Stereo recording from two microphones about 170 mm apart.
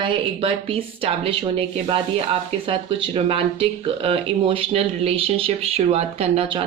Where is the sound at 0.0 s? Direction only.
30° right (ahead or behind).